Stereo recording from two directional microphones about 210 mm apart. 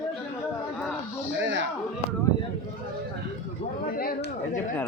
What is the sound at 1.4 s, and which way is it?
Speech, 55° right (ahead or behind).